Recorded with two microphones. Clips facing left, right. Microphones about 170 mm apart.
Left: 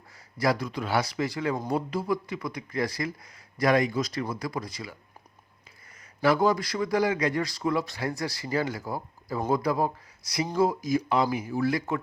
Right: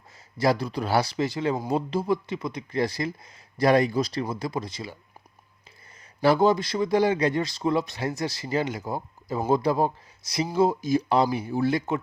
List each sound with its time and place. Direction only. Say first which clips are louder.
0.3 s a man's voice: right 3 dB; 30° right (ahead or behind)
6.2 s a man's voice: right 3 dB; 25° right (ahead or behind)